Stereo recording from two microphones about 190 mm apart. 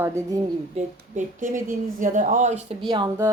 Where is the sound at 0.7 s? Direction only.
40° right (ahead or behind).